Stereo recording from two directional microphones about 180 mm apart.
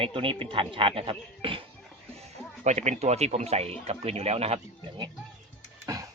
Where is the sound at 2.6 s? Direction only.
40° right (ahead or behind).